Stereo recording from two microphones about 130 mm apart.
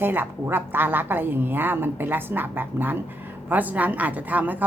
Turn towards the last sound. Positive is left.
turn(degrees=-15)  # may be behind; listen again after turning